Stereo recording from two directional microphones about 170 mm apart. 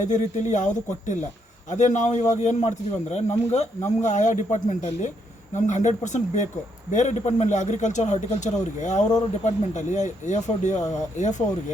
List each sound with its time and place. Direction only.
0.0 s a man's voice: 45° left (ahead or behind)